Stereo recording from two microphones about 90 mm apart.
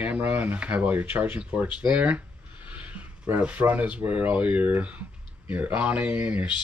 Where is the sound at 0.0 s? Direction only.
15° right (ahead or behind).